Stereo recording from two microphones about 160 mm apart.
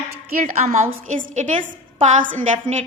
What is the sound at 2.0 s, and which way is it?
Speech, 50° right (ahead or behind).